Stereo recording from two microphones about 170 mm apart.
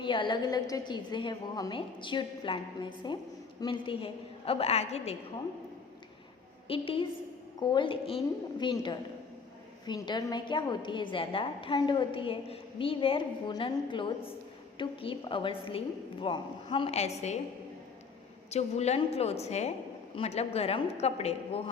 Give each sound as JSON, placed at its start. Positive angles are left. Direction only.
{"t": 0.0, "sound": "a woman's voice", "side_deg": 30}
{"t": 6.7, "sound": "a woman's voice", "side_deg": 35}
{"t": 18.5, "sound": "a woman's voice", "side_deg": 40}